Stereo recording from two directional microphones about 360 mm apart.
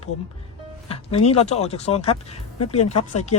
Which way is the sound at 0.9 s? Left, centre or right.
Centre.